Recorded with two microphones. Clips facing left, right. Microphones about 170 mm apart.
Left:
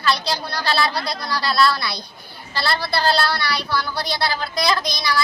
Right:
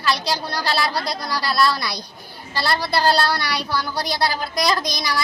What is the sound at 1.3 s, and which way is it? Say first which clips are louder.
A woman's voice: left 1 dB; 15° right (ahead or behind).